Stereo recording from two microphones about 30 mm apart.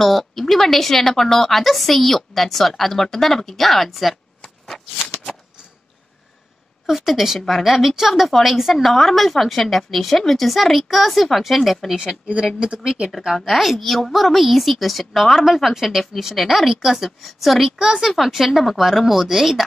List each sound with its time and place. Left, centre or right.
0.0 s a woman's voice: centre
4.7 s shuffling cards: centre
7.0 s a woman's voice: centre
12.5 s speech: right
13.3 s a woman's voice: centre